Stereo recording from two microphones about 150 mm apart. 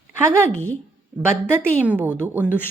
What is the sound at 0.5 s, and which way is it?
Speech, 10° left (ahead or behind).